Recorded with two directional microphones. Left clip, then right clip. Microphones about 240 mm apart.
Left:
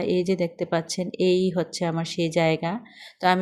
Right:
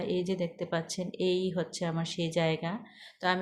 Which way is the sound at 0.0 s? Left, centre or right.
Left.